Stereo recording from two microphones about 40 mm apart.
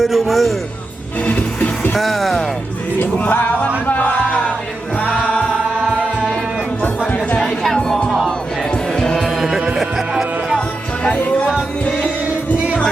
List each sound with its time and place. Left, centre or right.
0.0 s a man's voice: centre
1.3 s music: left
1.9 s music: centre
3.0 s music: left
6.8 s music: left
7.4 s music: centre
7.8 s music: left
9.7 s music: centre
12.5 s music: right